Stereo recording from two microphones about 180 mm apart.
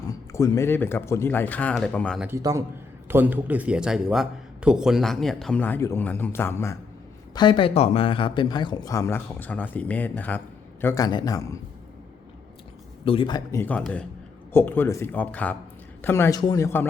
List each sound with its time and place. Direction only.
0.1 s speech: 15° left (ahead or behind)
2.2 s a man's voice: 15° right (ahead or behind); by 6.7 s 15° left (ahead or behind)
7.3 s a man's voice: 25° left (ahead or behind)
13.1 s speech: 25° left (ahead or behind)